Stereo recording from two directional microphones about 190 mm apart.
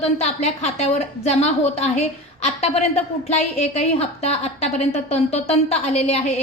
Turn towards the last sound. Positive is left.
turn(degrees=35)  # may be behind; listen again after turning